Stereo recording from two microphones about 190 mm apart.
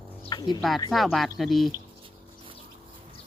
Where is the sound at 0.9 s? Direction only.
Centre (ahead or behind).